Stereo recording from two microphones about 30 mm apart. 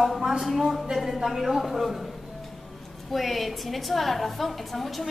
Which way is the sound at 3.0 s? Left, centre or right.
Centre.